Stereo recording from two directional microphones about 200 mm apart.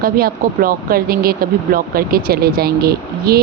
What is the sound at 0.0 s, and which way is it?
Speech, 45° right (ahead or behind).